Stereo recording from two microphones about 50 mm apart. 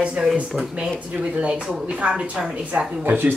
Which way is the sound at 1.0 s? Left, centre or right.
Right.